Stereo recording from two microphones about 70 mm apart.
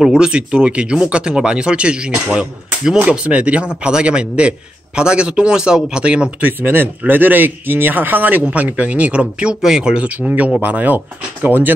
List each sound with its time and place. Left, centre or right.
0.0 s a man's voice: centre
6.4 s a man's voice: right